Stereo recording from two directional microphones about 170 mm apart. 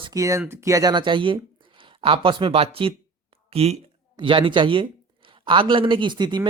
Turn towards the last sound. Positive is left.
turn(degrees=-25)  # may be behind; listen again after turning